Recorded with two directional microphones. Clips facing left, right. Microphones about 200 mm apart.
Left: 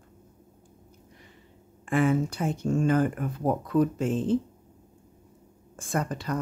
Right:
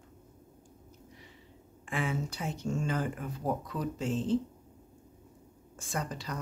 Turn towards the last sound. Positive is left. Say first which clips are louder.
# left 7 dB
turn(degrees=55)  # may be behind; listen again after turning